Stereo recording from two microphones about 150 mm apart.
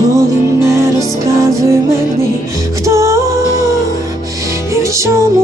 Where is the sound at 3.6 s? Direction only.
20° right (ahead or behind).